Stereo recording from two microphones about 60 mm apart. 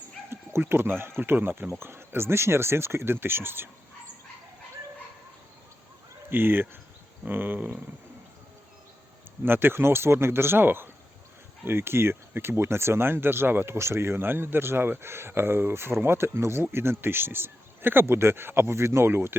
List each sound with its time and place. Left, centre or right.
0.3 s speech: right
6.3 s speech: right
9.4 s speech: right